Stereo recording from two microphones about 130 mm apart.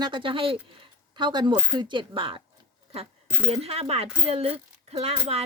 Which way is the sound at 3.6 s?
50° right (ahead or behind).